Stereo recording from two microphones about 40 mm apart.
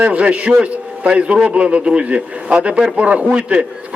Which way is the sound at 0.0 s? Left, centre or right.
Right.